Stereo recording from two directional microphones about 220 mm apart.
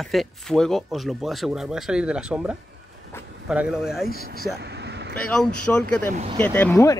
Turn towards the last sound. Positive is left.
turn(degrees=10)  # may be behind; listen again after turning